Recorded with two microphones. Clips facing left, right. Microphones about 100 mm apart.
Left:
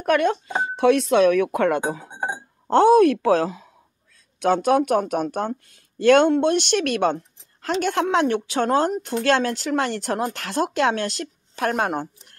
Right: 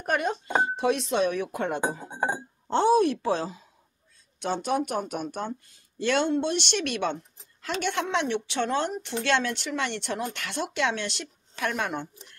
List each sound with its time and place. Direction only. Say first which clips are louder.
0.0 s speech: left 8 dB; 80° left
2.7 s a woman's voice: left 7 dB; 50° left (ahead or behind)